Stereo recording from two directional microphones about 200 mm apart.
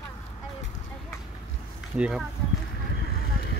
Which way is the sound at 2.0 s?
5° right (ahead or behind).